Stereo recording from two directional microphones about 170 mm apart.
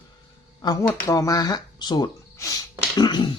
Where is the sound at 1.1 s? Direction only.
20° left (ahead or behind).